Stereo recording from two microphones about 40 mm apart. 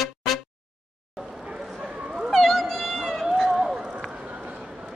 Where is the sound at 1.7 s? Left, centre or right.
Right.